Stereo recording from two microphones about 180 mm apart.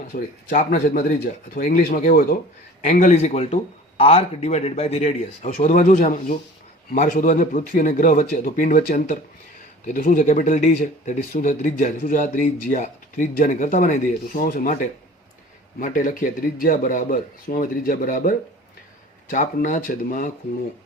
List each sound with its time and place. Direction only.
0.1 s speech: 45° left (ahead or behind)
15.8 s speech: 50° left (ahead or behind)